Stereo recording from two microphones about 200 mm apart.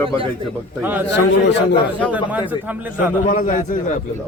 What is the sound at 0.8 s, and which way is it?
Speech, 10° right (ahead or behind).